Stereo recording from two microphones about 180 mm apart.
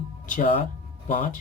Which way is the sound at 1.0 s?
45° left (ahead or behind).